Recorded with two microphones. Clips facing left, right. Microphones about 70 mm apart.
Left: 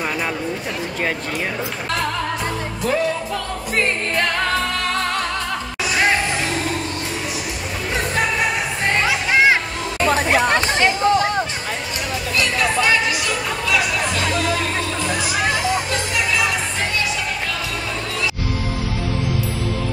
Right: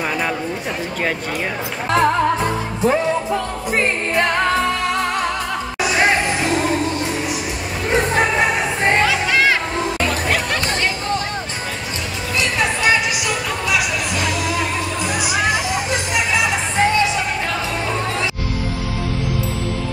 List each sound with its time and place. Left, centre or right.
0.0 s a sound: centre
1.9 s music: right
7.9 s music: right
9.0 s music: centre
12.4 s music: right